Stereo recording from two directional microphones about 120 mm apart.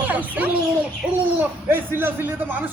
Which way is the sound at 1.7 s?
20° right (ahead or behind).